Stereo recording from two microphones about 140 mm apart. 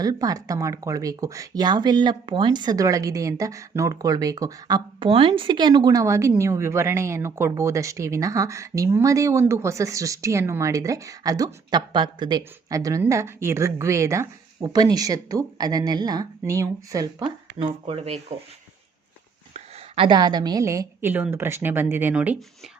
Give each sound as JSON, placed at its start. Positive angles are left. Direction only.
{"t": 0.0, "sound": "speech", "side_deg": -25}
{"t": 4.9, "sound": "speech", "side_deg": -40}
{"t": 17.2, "sound": "speech", "side_deg": -40}
{"t": 19.5, "sound": "a woman's voice", "side_deg": -35}